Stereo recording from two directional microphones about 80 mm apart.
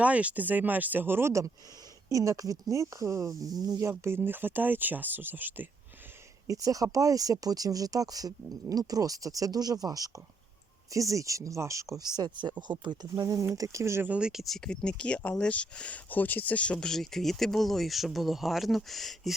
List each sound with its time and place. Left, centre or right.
0.0 s speech: centre
2.0 s speech: right
4.0 s speech: right
6.5 s speech: right
11.9 s speech: right
14.0 s speech: centre
14.4 s speech: centre